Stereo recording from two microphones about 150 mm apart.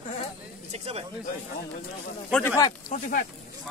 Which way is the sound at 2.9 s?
65° left (ahead or behind).